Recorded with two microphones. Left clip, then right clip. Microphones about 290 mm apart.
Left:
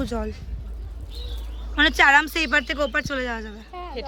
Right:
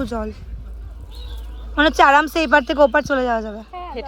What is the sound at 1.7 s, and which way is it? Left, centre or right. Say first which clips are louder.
Speech: right 3 dB; centre.